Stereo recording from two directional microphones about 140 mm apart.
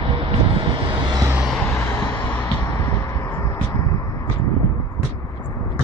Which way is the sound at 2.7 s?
20° left (ahead or behind).